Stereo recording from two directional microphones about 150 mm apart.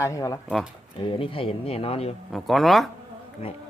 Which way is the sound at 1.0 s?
35° left (ahead or behind).